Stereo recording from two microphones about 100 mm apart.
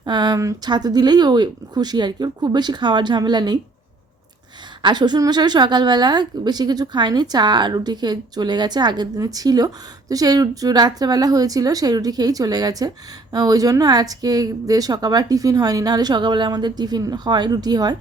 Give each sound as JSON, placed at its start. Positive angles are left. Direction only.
{"t": 0.0, "sound": "speech", "side_deg": -45}
{"t": 0.3, "sound": "a woman's voice", "side_deg": -30}
{"t": 0.7, "sound": "speech", "side_deg": -45}
{"t": 4.8, "sound": "a woman's voice", "side_deg": -50}